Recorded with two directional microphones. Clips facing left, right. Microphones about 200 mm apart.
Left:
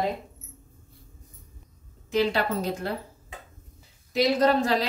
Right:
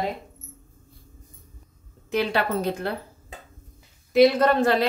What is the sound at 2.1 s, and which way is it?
Speech, 60° right (ahead or behind).